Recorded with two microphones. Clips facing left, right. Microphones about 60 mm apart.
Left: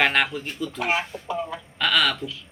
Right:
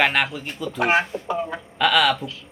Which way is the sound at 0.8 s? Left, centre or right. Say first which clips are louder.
Right 6 dB; right.